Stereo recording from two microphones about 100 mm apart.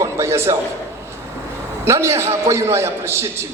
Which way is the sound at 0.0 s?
25° right (ahead or behind).